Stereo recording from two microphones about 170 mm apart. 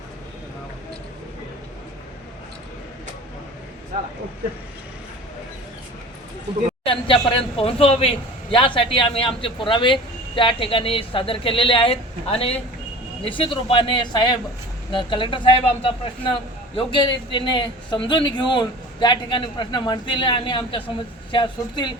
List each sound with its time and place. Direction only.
6.8 s a man's voice: 30° left (ahead or behind)